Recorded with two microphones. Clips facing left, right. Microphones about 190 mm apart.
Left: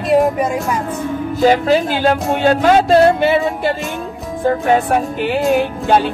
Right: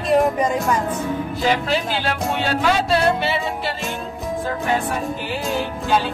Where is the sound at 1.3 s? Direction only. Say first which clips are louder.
Left 10 dB; 45° left (ahead or behind).